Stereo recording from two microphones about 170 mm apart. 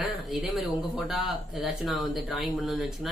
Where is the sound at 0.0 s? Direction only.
Centre (ahead or behind).